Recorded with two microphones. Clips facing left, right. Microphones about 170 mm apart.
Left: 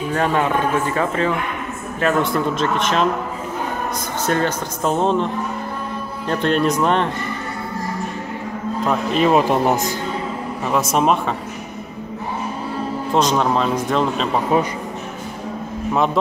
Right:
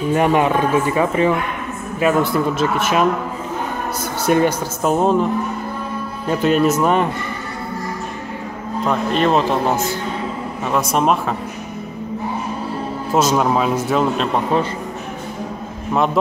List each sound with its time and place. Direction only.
0.1 s speech: 15° right (ahead or behind)
4.3 s speech: 10° right (ahead or behind)
8.8 s speech: 5° left (ahead or behind)
10.6 s a man's voice: centre (ahead or behind)
13.1 s a man's voice: 5° right (ahead or behind)